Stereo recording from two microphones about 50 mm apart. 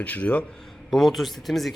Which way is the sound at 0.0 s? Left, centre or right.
Left.